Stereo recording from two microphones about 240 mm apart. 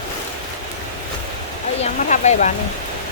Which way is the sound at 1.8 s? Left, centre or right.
Left.